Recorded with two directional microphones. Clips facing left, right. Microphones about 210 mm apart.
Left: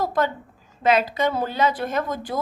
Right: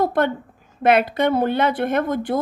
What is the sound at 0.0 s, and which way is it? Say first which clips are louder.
Speech: right 4 dB; 60° right (ahead or behind).